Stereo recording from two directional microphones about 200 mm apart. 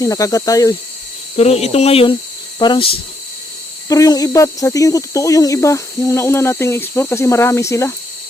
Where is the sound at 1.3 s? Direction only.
30° left (ahead or behind); by 7.9 s 15° left (ahead or behind).